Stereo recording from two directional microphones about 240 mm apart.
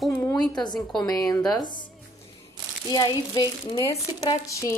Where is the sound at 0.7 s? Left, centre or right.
Centre.